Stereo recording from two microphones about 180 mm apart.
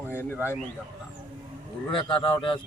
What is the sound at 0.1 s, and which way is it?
Speech, 10° left (ahead or behind).